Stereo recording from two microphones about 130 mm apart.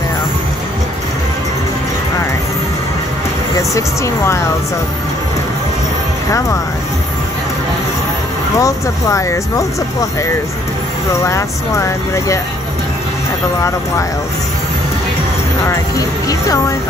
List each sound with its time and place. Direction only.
3.5 s speech: 25° left (ahead or behind)
8.5 s speech: 25° left (ahead or behind)
11.2 s speech: 20° left (ahead or behind)